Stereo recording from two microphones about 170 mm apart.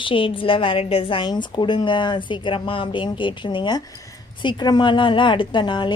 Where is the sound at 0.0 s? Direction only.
30° left (ahead or behind).